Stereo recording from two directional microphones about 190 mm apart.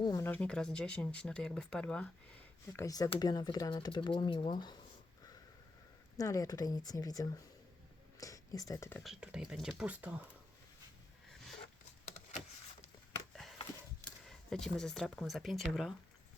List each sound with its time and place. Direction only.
0.0 s speech: 15° left (ahead or behind)
6.1 s speech: 15° left (ahead or behind)
9.0 s speech: 5° right (ahead or behind)
14.3 s speech: 5° left (ahead or behind)